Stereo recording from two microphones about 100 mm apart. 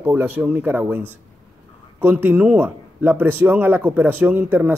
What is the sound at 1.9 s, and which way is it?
A man's voice, 20° right (ahead or behind).